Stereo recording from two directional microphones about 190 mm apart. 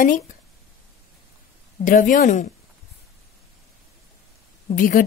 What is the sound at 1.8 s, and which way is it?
Speech, 45° left (ahead or behind).